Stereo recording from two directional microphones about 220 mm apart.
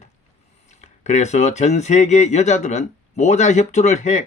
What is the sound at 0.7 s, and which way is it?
Speech, 30° left (ahead or behind).